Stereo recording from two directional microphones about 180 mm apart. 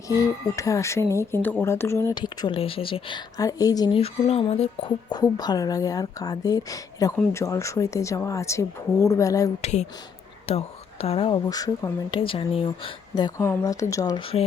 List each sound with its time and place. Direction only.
0.1 s a woman's voice: 20° left (ahead or behind)
9.6 s speech: 35° left (ahead or behind)